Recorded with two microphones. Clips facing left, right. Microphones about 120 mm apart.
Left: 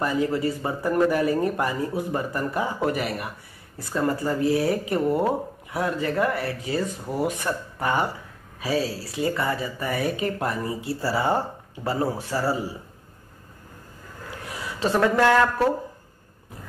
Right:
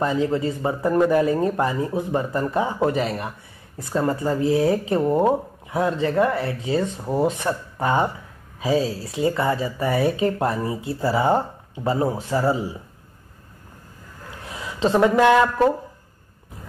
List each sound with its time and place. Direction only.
0.0 s speech: 20° right (ahead or behind)
14.5 s speech: 20° right (ahead or behind)